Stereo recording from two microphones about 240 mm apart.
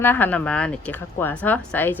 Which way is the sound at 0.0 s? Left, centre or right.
Centre.